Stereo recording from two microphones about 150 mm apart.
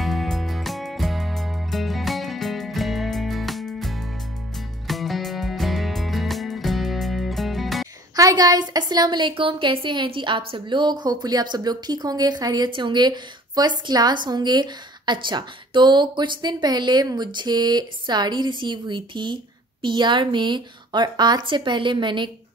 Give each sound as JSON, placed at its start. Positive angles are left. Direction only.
{"t": 0.0, "sound": "music", "side_deg": 0}
{"t": 8.2, "sound": "a woman's voice", "side_deg": -25}